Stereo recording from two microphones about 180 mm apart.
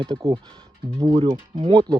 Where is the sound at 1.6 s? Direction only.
30° right (ahead or behind).